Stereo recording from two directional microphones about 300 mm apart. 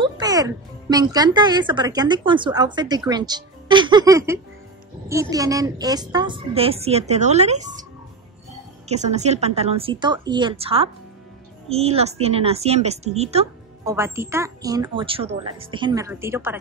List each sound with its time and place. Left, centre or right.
0.0 s a woman's voice: centre
8.8 s a woman's voice: right
13.8 s speech: centre